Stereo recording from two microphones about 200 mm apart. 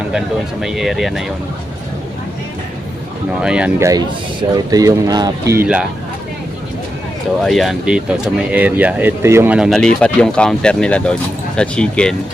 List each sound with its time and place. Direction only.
0.6 s speech: centre (ahead or behind)
3.4 s speech: 5° right (ahead or behind)
3.8 s speech: 20° right (ahead or behind)
5.5 s speech: 5° right (ahead or behind)
7.4 s speech: centre (ahead or behind)